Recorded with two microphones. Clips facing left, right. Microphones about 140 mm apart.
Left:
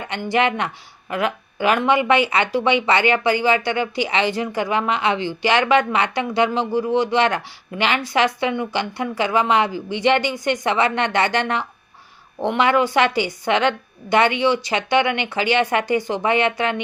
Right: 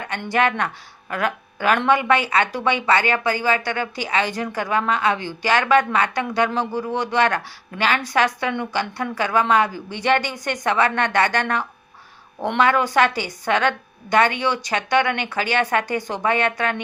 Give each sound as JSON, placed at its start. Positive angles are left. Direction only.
{"t": 0.2, "sound": "a woman's voice", "side_deg": 15}